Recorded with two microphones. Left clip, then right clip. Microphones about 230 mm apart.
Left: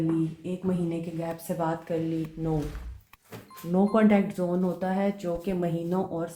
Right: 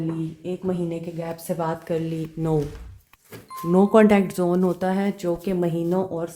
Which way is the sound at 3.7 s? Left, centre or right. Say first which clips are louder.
Right 7 dB; right.